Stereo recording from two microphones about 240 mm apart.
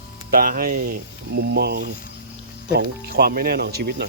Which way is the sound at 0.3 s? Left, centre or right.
Right.